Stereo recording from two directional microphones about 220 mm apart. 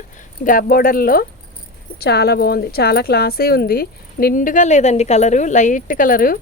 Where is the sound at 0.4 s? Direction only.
40° left (ahead or behind).